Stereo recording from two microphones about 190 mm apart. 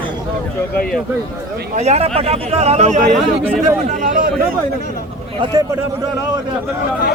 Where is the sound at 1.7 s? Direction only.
35° right (ahead or behind).